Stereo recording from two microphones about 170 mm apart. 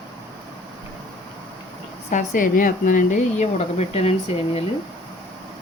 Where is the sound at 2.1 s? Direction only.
50° left (ahead or behind).